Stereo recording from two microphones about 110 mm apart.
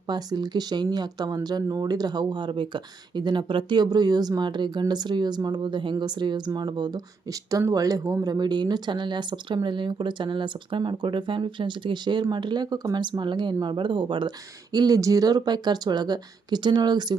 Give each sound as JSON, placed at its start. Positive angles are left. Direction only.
{"t": 0.1, "sound": "speech", "side_deg": -40}